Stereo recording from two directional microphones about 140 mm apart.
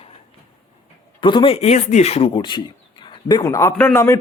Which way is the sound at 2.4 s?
35° left (ahead or behind).